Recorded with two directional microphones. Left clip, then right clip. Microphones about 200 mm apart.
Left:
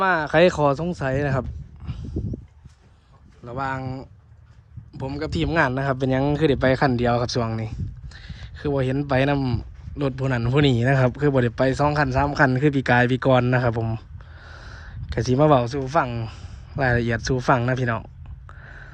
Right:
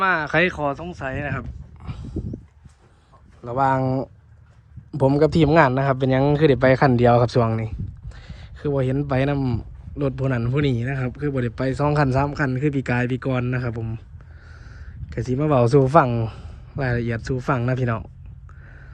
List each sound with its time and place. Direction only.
0.0 s speech: 15° left (ahead or behind)
0.7 s speech: 45° left (ahead or behind)
1.8 s a sound: 10° left (ahead or behind)
3.4 s speech: 5° left (ahead or behind)
5.0 s speech: centre (ahead or behind)
14.5 s a sound: 5° left (ahead or behind)
15.3 s speech: 5° left (ahead or behind)